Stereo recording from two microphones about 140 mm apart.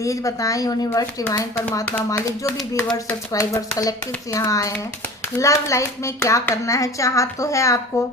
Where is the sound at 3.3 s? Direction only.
25° left (ahead or behind).